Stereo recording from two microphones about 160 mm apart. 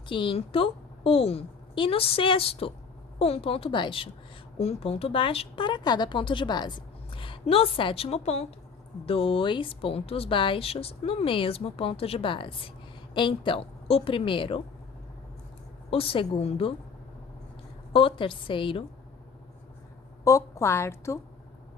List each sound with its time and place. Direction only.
0.1 s speech: 30° left (ahead or behind)
15.9 s speech: 35° left (ahead or behind)
17.9 s speech: 35° left (ahead or behind)
20.2 s a woman's voice: 20° left (ahead or behind)